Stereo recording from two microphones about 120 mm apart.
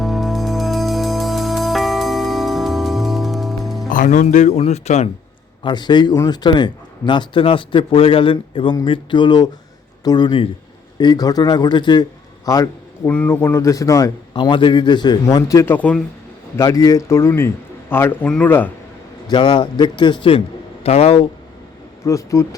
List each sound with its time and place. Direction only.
0.0 s music: centre (ahead or behind)
3.9 s speech: 90° left; by 5.0 s 65° left (ahead or behind)
5.6 s speech: 40° left (ahead or behind)
13.1 s a man's voice: 15° left (ahead or behind)
14.3 s speech: 40° left (ahead or behind)
15.7 s speech: 10° left (ahead or behind)
16.6 s a man's voice: 30° left (ahead or behind)
19.3 s speech: 40° left (ahead or behind)
20.8 s speech: 60° left (ahead or behind)
22.0 s a man's voice: 25° left (ahead or behind)